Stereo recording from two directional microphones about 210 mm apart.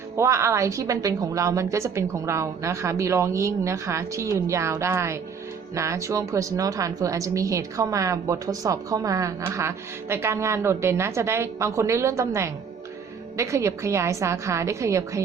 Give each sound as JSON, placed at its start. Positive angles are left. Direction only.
{"t": 0.2, "sound": "speech", "side_deg": -15}